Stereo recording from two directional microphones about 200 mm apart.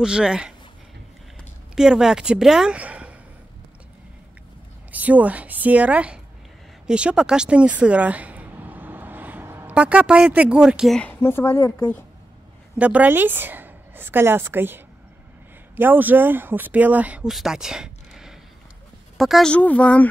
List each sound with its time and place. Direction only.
0.0 s speech: 5° right (ahead or behind)
1.8 s a woman's voice: 5° right (ahead or behind)
4.9 s a woman's voice: 10° right (ahead or behind); by 11.7 s 10° left (ahead or behind)
12.7 s a woman's voice: 5° right (ahead or behind)